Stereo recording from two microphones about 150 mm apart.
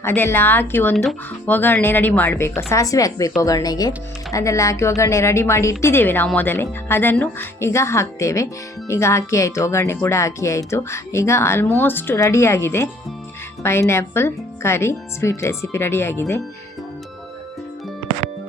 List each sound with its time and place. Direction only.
0.0 s speech: 15° left (ahead or behind)